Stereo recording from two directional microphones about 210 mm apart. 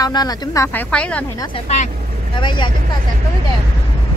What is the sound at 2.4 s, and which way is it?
Speech, 20° left (ahead or behind).